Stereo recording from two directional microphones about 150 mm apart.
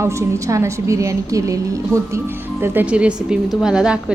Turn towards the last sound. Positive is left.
turn(degrees=-5)  # may be behind; listen again after turning